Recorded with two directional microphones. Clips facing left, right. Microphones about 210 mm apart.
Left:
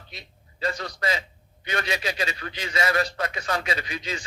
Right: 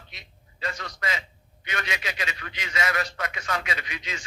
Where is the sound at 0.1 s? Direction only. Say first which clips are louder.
Left 5 dB; 35° left (ahead or behind).